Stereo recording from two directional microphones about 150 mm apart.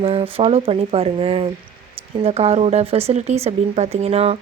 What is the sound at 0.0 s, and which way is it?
A woman's voice, 40° right (ahead or behind).